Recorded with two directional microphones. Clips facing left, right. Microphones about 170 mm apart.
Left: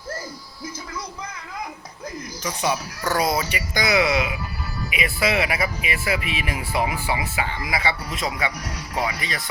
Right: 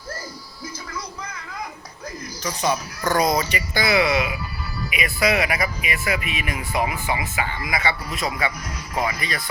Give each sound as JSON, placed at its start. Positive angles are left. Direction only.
{"t": 2.4, "sound": "speech", "side_deg": 10}
{"t": 3.8, "sound": "speech", "side_deg": 20}